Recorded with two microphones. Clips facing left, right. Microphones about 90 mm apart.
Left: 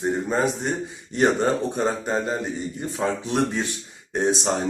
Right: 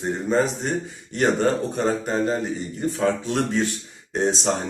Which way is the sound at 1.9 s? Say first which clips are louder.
Right 2 dB; 15° left (ahead or behind).